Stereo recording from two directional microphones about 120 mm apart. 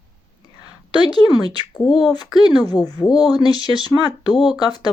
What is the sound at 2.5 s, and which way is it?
Speech, 35° left (ahead or behind).